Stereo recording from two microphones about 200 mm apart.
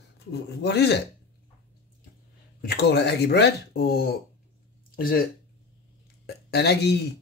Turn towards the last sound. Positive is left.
turn(degrees=55)  # may be behind; listen again after turning